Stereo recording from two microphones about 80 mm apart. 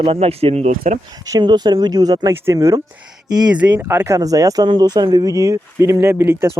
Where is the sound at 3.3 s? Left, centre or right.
Right.